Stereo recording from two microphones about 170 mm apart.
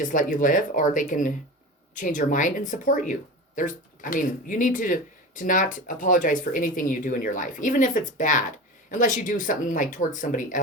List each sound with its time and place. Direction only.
0.0 s speech: 50° left (ahead or behind)